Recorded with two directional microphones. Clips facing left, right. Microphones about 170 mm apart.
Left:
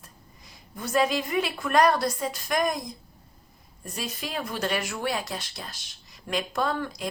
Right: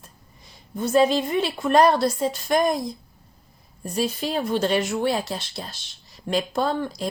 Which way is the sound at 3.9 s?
30° right (ahead or behind).